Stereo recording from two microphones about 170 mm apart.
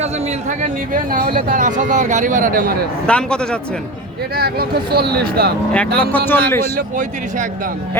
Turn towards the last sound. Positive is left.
turn(degrees=-50)  # may be behind; listen again after turning